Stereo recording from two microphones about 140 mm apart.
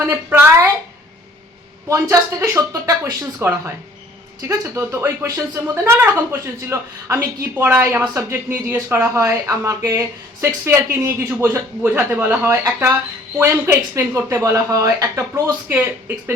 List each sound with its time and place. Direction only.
0.0 s speech: 20° right (ahead or behind)
1.9 s speech: 20° right (ahead or behind)
4.5 s speech: 20° right (ahead or behind)